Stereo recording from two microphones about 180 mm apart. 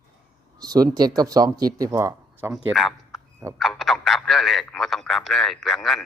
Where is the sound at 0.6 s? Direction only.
20° right (ahead or behind).